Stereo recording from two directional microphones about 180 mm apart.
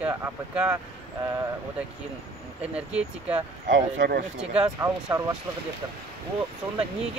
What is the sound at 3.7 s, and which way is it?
Speech, 70° right (ahead or behind).